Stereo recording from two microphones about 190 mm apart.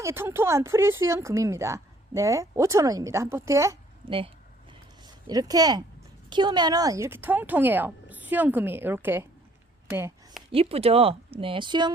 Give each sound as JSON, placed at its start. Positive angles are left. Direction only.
{"t": 0.0, "sound": "a woman's voice", "side_deg": -15}
{"t": 4.0, "sound": "speech", "side_deg": -25}
{"t": 5.3, "sound": "a woman's voice", "side_deg": -20}
{"t": 10.5, "sound": "speech", "side_deg": -30}